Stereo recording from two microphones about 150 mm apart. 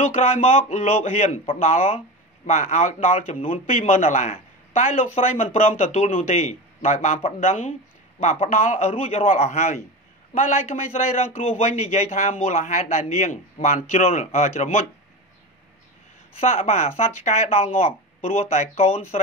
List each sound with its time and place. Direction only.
0.1 s a man's voice: 45° left (ahead or behind)
16.3 s speech: 45° left (ahead or behind)